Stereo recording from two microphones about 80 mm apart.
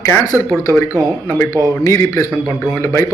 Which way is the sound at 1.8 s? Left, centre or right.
Left.